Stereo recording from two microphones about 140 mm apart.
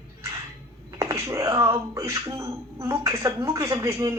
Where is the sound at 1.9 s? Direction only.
20° right (ahead or behind).